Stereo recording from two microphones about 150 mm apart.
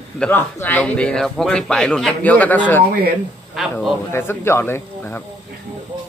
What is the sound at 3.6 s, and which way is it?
Speech, centre (ahead or behind).